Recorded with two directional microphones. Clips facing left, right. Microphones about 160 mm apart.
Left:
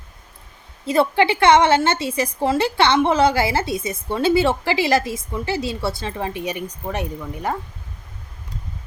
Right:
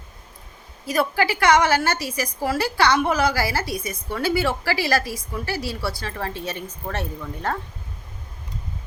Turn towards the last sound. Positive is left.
turn(degrees=10)  # may be behind; listen again after turning